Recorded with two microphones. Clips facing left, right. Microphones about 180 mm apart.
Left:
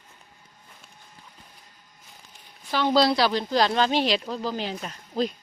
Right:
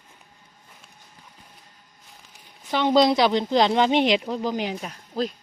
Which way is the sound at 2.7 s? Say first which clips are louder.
Right 3 dB; 20° right (ahead or behind).